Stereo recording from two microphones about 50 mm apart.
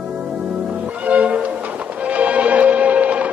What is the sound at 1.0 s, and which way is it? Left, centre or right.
Music, right.